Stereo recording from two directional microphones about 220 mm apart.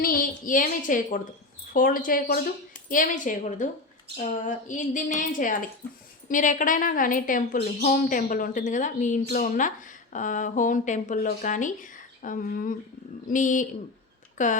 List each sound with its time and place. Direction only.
0.0 s a woman's voice: 40° left (ahead or behind)